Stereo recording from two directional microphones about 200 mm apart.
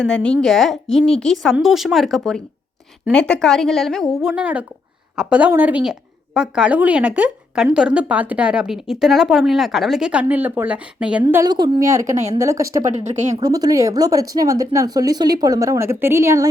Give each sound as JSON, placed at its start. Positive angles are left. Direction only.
{"t": 0.0, "sound": "speech", "side_deg": 5}